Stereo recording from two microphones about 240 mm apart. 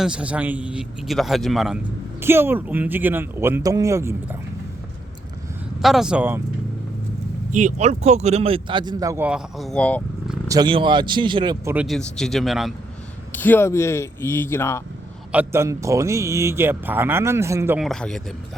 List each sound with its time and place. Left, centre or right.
0.0 s a man's voice: centre
5.8 s a man's voice: centre
7.5 s speech: right; by 10.3 s centre
10.5 s speech: centre
11.7 s a man's voice: centre
15.3 s a man's voice: centre